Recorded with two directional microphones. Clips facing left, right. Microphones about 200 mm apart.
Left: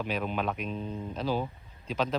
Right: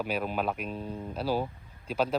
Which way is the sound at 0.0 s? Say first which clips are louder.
Right 1 dB; 5° right (ahead or behind).